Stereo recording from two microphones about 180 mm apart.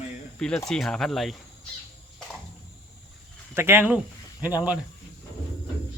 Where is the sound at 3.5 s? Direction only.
15° right (ahead or behind).